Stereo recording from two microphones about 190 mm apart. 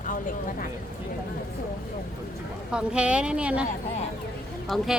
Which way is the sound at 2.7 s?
5° right (ahead or behind).